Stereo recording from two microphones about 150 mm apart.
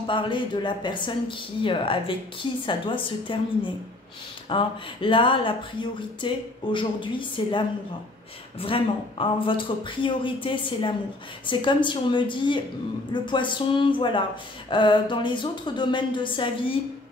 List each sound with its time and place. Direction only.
0.0 s speech: 35° left (ahead or behind)